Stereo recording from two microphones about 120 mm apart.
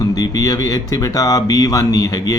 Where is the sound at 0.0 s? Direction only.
30° left (ahead or behind).